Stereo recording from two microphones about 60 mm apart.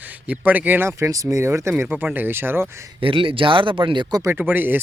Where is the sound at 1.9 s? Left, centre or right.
Right.